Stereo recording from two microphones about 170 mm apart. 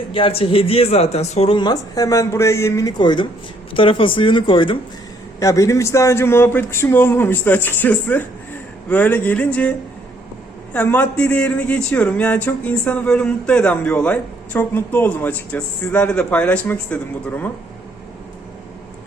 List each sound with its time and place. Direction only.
0.1 s speech: 35° left (ahead or behind)
5.4 s speech: 20° left (ahead or behind)